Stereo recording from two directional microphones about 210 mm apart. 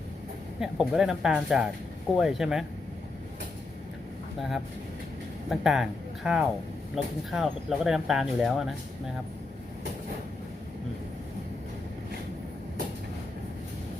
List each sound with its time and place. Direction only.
0.6 s speech: centre (ahead or behind)
4.4 s speech: centre (ahead or behind)